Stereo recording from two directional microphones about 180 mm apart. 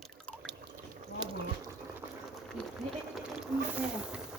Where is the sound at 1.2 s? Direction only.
25° right (ahead or behind).